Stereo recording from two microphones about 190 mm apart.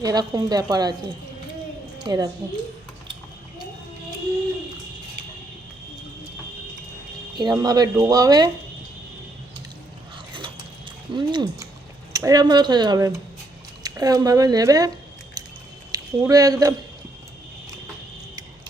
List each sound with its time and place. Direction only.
0.0 s speech: 20° right (ahead or behind)
2.0 s speech: 20° right (ahead or behind)
7.3 s speech: 20° right (ahead or behind)
11.1 s speech: 25° right (ahead or behind)
15.4 s a sound: 20° right (ahead or behind)
15.9 s speech: 20° right (ahead or behind)